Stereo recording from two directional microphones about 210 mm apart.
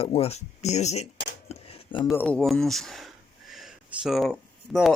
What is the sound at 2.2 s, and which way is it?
Speech, 5° left (ahead or behind).